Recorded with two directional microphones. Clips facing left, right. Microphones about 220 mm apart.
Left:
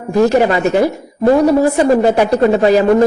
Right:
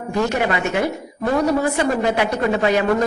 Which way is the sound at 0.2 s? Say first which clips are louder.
Left 9 dB; 40° left (ahead or behind).